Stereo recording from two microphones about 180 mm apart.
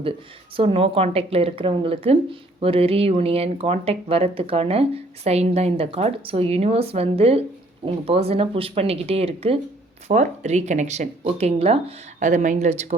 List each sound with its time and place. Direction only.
0.5 s a woman's voice: 30° right (ahead or behind)